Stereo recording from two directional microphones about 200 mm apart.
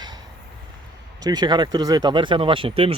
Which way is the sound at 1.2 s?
20° right (ahead or behind).